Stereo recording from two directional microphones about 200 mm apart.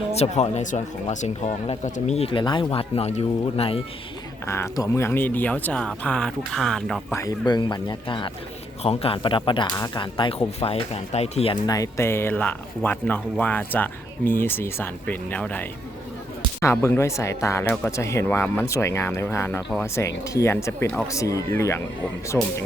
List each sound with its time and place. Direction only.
0.1 s speech: 30° left (ahead or behind)
4.4 s speech: 15° left (ahead or behind)
7.2 s speech: 20° left (ahead or behind)
11.6 s speech: 15° left (ahead or behind)